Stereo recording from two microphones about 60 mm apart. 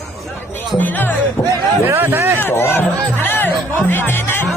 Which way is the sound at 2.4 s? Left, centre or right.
Left.